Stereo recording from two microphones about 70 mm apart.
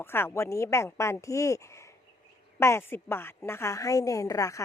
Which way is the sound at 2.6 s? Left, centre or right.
Left.